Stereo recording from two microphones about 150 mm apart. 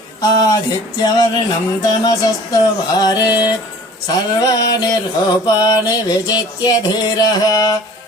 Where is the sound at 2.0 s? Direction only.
25° left (ahead or behind).